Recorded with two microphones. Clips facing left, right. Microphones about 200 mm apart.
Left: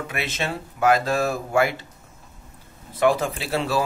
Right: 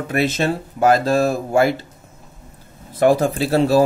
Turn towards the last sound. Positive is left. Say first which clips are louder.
# right 9 dB
turn(degrees=-40)  # may be behind; listen again after turning